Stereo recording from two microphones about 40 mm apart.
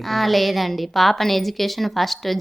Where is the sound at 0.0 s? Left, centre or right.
Centre.